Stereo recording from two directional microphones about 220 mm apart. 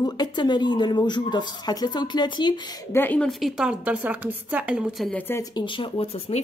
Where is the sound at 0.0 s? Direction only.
20° left (ahead or behind).